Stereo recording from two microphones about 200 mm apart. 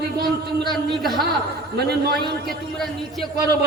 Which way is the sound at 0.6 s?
Centre (ahead or behind).